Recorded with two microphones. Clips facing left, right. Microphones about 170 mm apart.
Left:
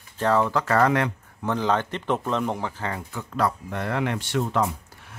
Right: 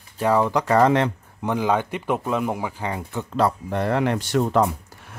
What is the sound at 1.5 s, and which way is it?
Speech, 10° right (ahead or behind).